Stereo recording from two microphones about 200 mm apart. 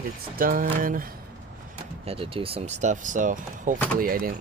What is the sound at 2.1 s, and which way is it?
Speech, 30° right (ahead or behind).